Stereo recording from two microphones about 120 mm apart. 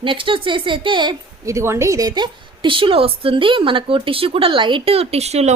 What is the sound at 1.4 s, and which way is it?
A woman's voice, 25° right (ahead or behind).